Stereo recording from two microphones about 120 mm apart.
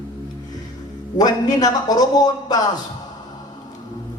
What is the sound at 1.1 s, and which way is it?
A man's voice, 35° left (ahead or behind).